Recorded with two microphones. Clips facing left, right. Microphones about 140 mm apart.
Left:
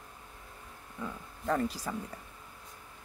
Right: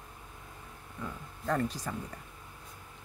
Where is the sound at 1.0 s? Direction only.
5° left (ahead or behind).